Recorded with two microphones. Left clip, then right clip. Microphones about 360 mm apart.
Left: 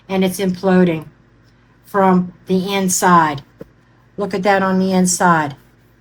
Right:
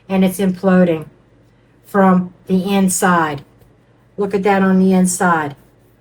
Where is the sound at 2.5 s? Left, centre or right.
Left.